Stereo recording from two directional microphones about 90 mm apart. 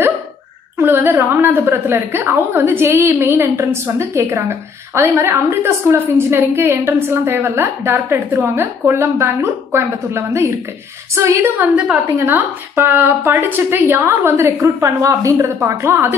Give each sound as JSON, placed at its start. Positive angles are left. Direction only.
{"t": 0.7, "sound": "a woman's voice", "side_deg": -25}
{"t": 11.5, "sound": "a woman's voice", "side_deg": -15}